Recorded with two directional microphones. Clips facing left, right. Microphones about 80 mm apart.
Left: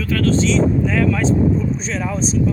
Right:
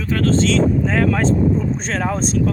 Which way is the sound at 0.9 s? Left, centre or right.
Right.